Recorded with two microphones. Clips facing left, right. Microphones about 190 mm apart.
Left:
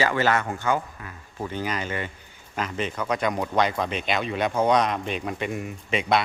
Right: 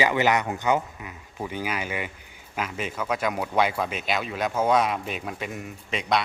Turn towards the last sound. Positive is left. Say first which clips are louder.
# left 3 dB
turn(degrees=0)  # may be behind; listen again after turning